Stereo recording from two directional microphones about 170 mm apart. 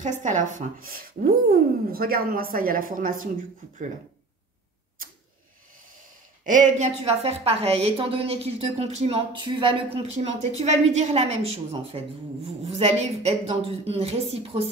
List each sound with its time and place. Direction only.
0.0 s speech: 45° right (ahead or behind)
6.4 s speech: 50° right (ahead or behind)
7.1 s a woman's voice: 35° right (ahead or behind)